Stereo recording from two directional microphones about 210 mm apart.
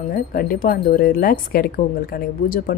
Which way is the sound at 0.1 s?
45° left (ahead or behind).